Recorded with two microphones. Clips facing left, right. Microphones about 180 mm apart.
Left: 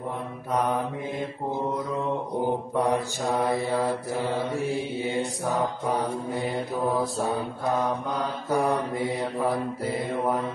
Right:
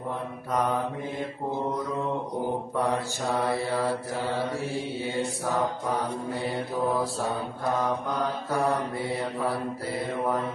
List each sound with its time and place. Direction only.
2.8 s mantra: 15° left (ahead or behind)
8.5 s mantra: 15° left (ahead or behind)